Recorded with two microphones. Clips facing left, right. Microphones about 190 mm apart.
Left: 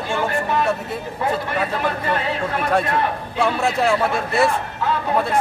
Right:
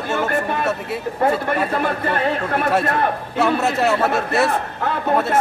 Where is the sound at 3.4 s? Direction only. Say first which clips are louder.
Right 1 dB; 5° right (ahead or behind).